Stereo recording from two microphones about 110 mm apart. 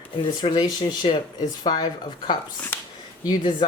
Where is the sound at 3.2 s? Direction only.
40° left (ahead or behind).